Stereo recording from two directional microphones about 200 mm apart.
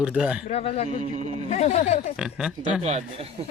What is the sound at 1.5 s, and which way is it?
Speech, 35° left (ahead or behind).